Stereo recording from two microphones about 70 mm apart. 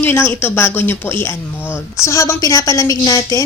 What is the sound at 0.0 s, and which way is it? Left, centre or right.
A woman's voice, left.